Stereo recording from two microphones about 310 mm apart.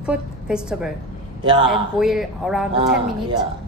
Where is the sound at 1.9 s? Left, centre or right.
Centre.